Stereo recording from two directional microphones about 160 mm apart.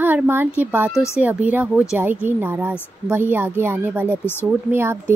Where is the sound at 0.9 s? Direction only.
20° left (ahead or behind).